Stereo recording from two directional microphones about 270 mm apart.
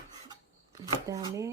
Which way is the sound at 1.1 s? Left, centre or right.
Centre.